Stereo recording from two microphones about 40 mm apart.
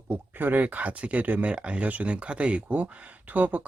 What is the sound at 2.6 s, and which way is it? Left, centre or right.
Speech, right.